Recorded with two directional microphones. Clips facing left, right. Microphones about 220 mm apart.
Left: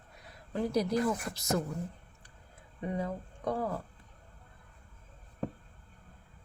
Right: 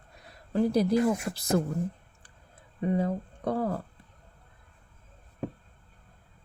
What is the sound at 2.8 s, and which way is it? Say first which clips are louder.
Speech: right 7 dB; 30° right (ahead or behind).